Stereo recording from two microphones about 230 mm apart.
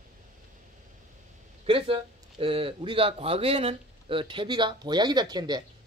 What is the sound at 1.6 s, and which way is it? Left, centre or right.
Speech, right.